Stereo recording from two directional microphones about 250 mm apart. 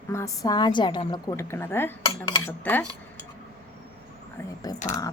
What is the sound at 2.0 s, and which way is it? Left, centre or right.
Dishes, centre.